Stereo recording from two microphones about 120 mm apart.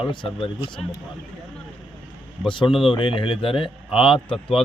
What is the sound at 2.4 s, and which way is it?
Speech, 40° left (ahead or behind).